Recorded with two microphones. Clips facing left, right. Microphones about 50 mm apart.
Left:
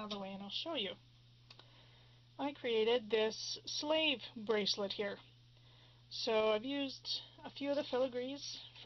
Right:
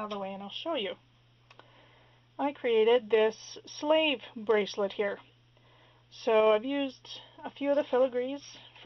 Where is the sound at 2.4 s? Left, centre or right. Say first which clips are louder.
Right 9 dB; right.